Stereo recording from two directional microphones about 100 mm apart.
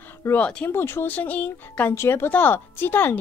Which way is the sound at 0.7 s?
25° left (ahead or behind).